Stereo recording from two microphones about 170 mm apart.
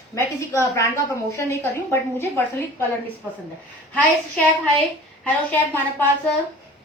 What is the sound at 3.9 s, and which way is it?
A woman's voice, 10° left (ahead or behind).